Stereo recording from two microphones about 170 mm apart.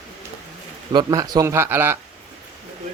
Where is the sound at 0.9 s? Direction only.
20° right (ahead or behind).